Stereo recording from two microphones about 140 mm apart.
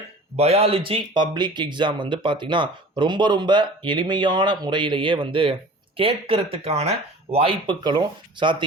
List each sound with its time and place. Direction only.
0.3 s speech: 50° right (ahead or behind)